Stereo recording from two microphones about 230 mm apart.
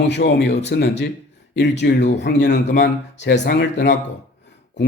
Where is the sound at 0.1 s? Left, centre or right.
Left.